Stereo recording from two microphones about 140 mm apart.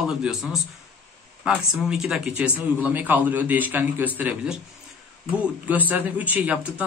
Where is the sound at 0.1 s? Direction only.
5° right (ahead or behind).